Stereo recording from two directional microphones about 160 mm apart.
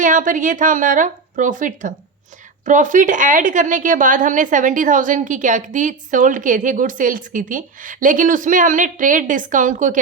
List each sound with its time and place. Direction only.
0.0 s speech: 55° right (ahead or behind)